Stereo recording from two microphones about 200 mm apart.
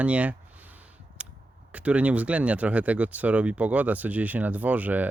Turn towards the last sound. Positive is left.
turn(degrees=-10)  # may be behind; listen again after turning